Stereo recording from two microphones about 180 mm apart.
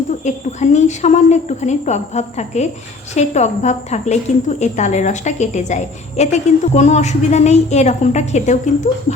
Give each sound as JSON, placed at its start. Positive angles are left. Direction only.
{"t": 0.3, "sound": "speech", "side_deg": 40}